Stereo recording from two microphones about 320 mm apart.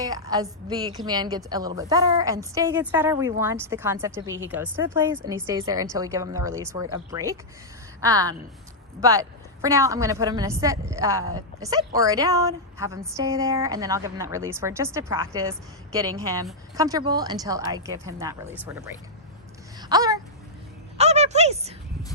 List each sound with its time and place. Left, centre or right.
0.0 s speech: centre